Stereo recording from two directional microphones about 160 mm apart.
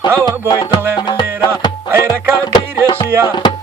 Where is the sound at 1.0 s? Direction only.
25° left (ahead or behind).